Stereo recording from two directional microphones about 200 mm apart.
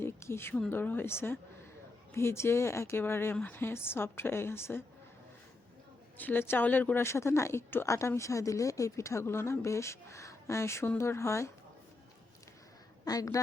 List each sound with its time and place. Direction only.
0.0 s a woman's voice: 10° left (ahead or behind)
6.1 s a woman's voice: 10° left (ahead or behind)
13.1 s a woman's voice: 15° left (ahead or behind)